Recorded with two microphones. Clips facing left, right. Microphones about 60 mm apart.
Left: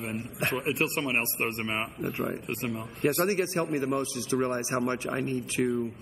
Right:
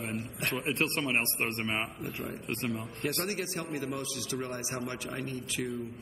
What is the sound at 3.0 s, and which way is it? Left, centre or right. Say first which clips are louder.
A man's voice: left 9 dB; left.